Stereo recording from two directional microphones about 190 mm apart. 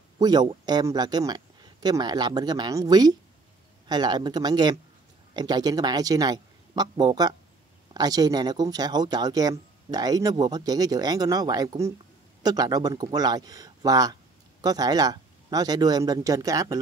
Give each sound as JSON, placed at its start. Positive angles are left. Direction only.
{"t": 0.2, "sound": "speech", "side_deg": -20}